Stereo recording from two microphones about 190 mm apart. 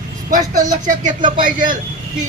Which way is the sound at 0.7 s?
40° right (ahead or behind).